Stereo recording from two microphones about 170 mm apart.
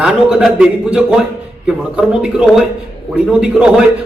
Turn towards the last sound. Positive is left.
turn(degrees=-5)  # may be behind; listen again after turning